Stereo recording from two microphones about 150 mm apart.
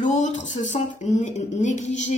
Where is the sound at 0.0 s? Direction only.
55° left (ahead or behind).